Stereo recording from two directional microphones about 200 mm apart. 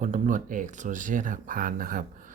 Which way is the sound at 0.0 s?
40° right (ahead or behind).